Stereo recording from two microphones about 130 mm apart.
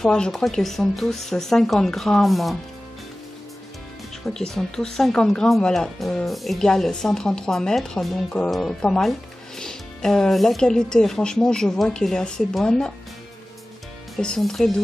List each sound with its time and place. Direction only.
0.0 s speech: 5° left (ahead or behind)
4.3 s speech: 5° left (ahead or behind)
14.1 s speech: 5° left (ahead or behind)